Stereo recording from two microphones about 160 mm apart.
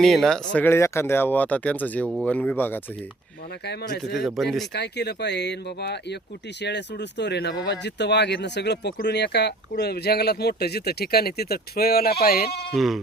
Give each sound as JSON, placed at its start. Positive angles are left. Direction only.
{"t": 0.0, "sound": "speech", "side_deg": 5}
{"t": 3.7, "sound": "speech", "side_deg": 90}
{"t": 4.1, "sound": "speech", "side_deg": 0}
{"t": 4.7, "sound": "speech", "side_deg": 90}
{"t": 12.7, "sound": "speech", "side_deg": 0}